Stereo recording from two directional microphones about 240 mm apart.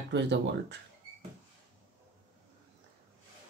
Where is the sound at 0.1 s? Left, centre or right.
Right.